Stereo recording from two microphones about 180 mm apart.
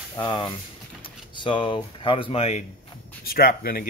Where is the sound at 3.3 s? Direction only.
55° left (ahead or behind).